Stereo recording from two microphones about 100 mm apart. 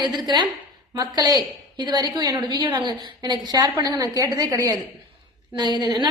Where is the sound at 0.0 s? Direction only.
45° right (ahead or behind).